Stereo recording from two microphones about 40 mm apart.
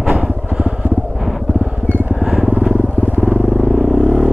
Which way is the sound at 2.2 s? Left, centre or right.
Centre.